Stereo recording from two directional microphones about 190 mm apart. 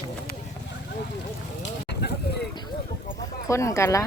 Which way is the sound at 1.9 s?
60° left (ahead or behind).